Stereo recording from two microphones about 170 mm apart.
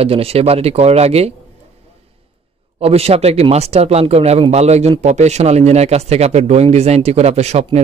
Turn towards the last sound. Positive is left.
turn(degrees=-40)  # may be behind; listen again after turning